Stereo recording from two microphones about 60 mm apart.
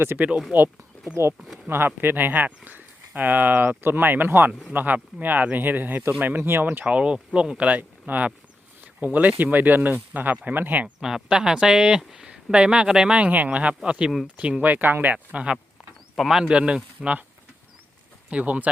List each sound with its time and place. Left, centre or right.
0.5 s speech: right
1.1 s speech: right
1.6 s speech: right
6.0 s speech: centre
6.2 s speech: right
6.8 s speech: centre
7.7 s speech: right
11.0 s speech: centre
16.1 s speech: centre
16.4 s speech: centre
18.3 s speech: right